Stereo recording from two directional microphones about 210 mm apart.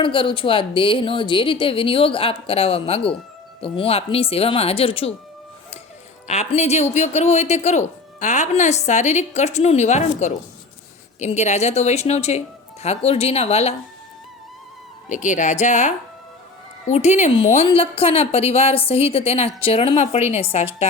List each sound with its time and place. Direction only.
0.0 s a woman's voice: 25° left (ahead or behind)
6.2 s a woman's voice: 35° left (ahead or behind)
15.1 s a woman's voice: 35° left (ahead or behind)